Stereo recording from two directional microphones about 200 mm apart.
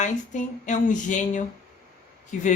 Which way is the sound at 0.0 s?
40° left (ahead or behind).